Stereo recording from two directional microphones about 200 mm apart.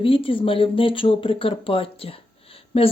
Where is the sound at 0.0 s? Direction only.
25° left (ahead or behind).